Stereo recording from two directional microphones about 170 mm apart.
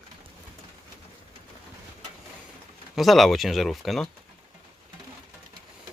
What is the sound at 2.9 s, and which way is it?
Speech, centre (ahead or behind).